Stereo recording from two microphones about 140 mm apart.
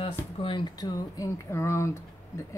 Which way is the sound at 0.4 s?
35° left (ahead or behind).